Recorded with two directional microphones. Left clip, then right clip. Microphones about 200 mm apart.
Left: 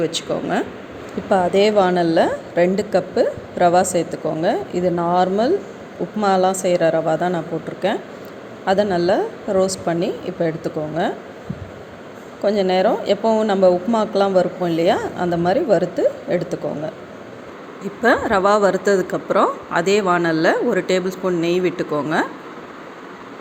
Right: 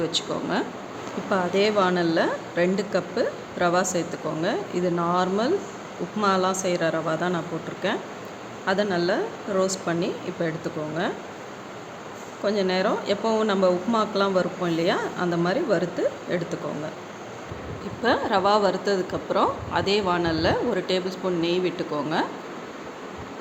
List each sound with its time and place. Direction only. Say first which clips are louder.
0.0 s a woman's voice: left 5 dB; 15° left (ahead or behind)
12.4 s a woman's voice: left 7 dB; 20° left (ahead or behind)
18.0 s a woman's voice: left 6 dB; 20° left (ahead or behind)